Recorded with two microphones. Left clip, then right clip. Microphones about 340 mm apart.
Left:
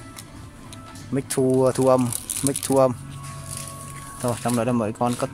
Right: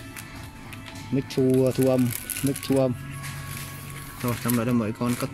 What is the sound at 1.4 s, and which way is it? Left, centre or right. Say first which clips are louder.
Speech: left 3 dB; left.